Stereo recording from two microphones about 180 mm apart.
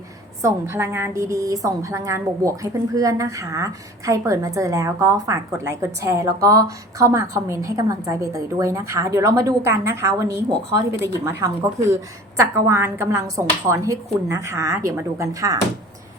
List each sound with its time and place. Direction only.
0.4 s a woman's voice: 15° right (ahead or behind)